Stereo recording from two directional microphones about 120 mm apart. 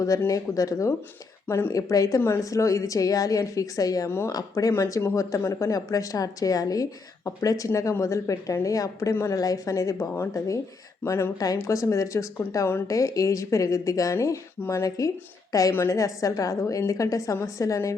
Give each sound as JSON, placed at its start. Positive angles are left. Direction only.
{"t": 0.0, "sound": "a woman's voice", "side_deg": 30}